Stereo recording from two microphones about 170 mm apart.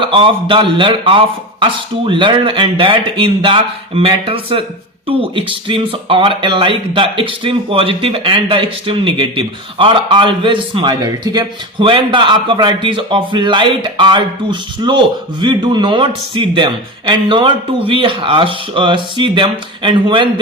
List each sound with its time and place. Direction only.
0.0 s a man's voice: 30° right (ahead or behind)